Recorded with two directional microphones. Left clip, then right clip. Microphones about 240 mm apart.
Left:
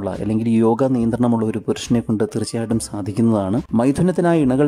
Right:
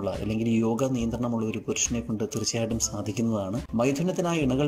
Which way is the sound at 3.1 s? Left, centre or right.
Centre.